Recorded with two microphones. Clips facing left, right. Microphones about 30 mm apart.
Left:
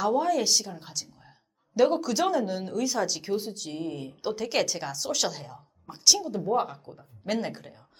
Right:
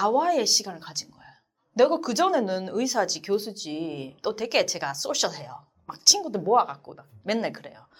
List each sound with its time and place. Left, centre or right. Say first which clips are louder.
0.0 s speech: right 3 dB; centre
1.7 s speech: right 2 dB; centre
2.8 s speech: right 1 dB; centre